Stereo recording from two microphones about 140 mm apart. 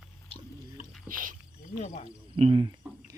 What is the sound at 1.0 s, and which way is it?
Speech, 75° right (ahead or behind).